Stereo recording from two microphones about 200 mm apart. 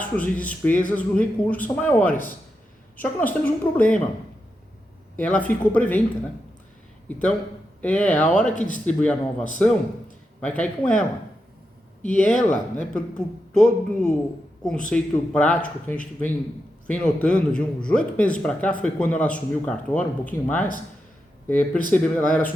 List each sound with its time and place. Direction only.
0.0 s speech: 5° left (ahead or behind)
5.1 s speech: 5° left (ahead or behind)
7.1 s speech: 5° left (ahead or behind)
12.0 s speech: 5° left (ahead or behind)